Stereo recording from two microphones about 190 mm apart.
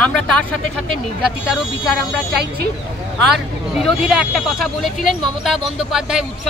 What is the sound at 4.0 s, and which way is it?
Speech, centre (ahead or behind).